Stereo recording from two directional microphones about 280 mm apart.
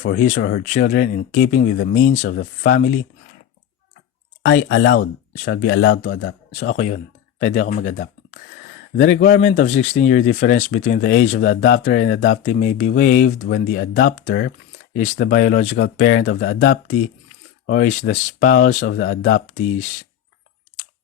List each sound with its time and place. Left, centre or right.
0.0 s speech: left
4.5 s speech: left
6.6 s speech: left